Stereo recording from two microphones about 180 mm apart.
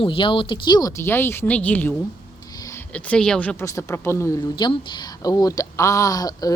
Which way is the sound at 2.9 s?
5° left (ahead or behind).